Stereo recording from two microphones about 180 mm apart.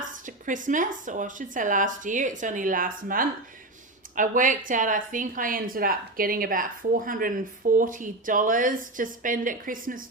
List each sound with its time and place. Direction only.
0.3 s speech: 45° right (ahead or behind)